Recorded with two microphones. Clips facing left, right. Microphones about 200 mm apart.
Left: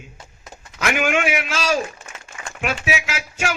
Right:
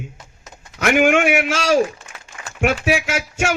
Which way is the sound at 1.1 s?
50° right (ahead or behind).